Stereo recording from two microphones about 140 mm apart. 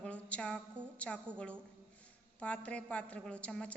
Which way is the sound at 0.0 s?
10° left (ahead or behind).